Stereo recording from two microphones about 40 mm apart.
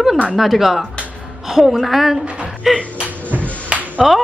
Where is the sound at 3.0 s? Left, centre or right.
Right.